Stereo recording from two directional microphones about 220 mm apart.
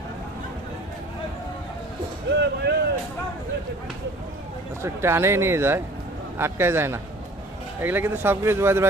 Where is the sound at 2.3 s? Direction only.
50° right (ahead or behind).